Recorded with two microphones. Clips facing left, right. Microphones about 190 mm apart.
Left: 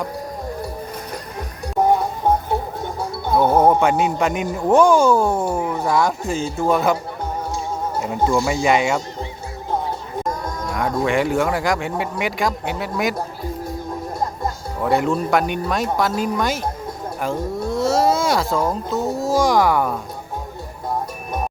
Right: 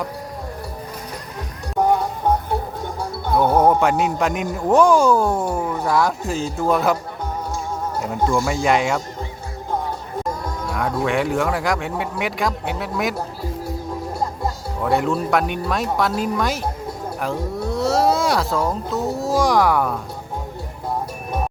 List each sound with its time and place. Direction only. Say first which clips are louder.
3.3 s speech: left 1 dB; 5° left (ahead or behind)
10.4 s speech: left 1 dB; 5° right (ahead or behind)
14.8 s speech: left 1 dB; centre (ahead or behind)